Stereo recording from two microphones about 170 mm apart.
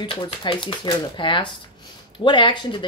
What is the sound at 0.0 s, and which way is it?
Speech, 30° left (ahead or behind).